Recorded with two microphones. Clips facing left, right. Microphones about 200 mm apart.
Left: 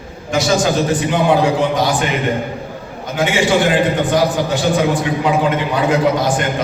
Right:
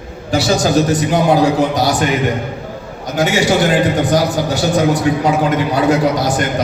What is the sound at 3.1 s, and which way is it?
A man's voice, 40° right (ahead or behind).